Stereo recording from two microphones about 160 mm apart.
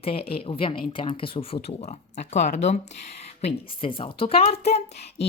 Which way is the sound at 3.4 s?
35° left (ahead or behind).